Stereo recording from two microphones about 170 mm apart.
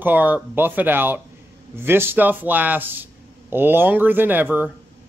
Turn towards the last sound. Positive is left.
turn(degrees=-10)  # may be behind; listen again after turning